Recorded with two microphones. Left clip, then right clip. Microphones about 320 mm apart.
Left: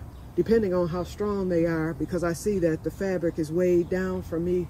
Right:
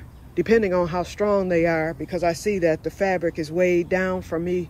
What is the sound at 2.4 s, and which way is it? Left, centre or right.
Speech, centre.